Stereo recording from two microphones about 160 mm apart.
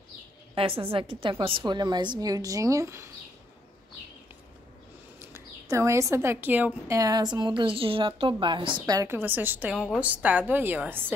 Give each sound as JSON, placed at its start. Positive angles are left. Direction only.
{"t": 0.6, "sound": "a woman's voice", "side_deg": -35}
{"t": 5.2, "sound": "a woman's voice", "side_deg": -15}
{"t": 7.0, "sound": "speech", "side_deg": -25}